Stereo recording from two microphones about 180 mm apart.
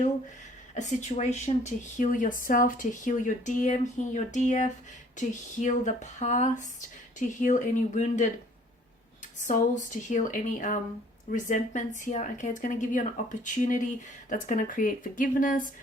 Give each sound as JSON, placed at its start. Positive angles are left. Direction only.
{"t": 0.7, "sound": "speech", "side_deg": 40}
{"t": 9.5, "sound": "speech", "side_deg": 45}